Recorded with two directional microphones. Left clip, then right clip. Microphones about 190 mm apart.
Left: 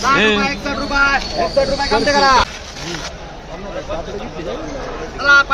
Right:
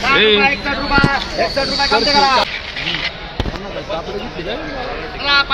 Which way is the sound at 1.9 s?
20° left (ahead or behind).